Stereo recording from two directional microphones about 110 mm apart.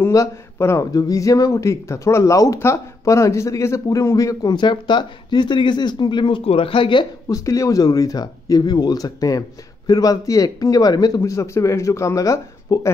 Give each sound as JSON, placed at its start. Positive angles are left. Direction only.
{"t": 0.0, "sound": "speech", "side_deg": 25}
{"t": 7.2, "sound": "speech", "side_deg": 30}